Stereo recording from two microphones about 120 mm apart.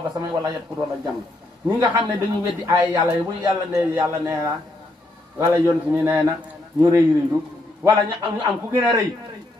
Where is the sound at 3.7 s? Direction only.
25° right (ahead or behind).